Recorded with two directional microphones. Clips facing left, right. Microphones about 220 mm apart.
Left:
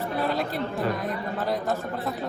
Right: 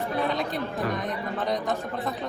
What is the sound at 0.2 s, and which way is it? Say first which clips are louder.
Speech: left 1 dB; 5° left (ahead or behind).